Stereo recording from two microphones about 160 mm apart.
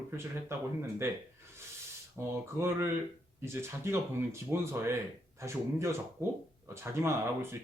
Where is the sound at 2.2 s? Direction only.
10° right (ahead or behind).